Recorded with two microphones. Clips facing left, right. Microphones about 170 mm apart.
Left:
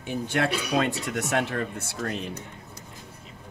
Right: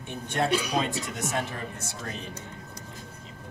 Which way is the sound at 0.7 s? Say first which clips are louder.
Left 3 dB; 65° left (ahead or behind).